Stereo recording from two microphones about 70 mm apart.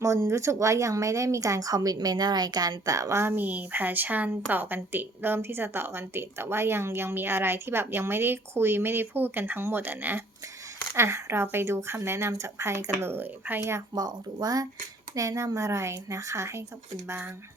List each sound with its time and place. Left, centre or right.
0.0 s speech: right
3.2 s a woman's voice: right
13.6 s a woman's voice: right
13.9 s speech: right
15.1 s speech: right